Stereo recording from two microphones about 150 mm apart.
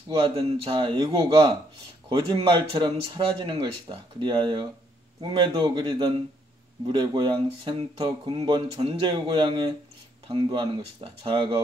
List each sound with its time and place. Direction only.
0.1 s speech: 35° right (ahead or behind)